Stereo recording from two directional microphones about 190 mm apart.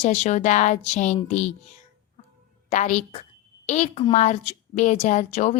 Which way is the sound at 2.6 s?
40° left (ahead or behind).